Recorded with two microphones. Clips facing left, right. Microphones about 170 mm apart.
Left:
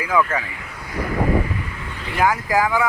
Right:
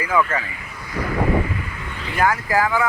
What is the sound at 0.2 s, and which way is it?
Speech, 5° left (ahead or behind).